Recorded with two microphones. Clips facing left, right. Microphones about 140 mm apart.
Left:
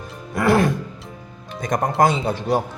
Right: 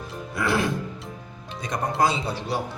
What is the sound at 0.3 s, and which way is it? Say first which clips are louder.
Music: left 7 dB; 55° left (ahead or behind).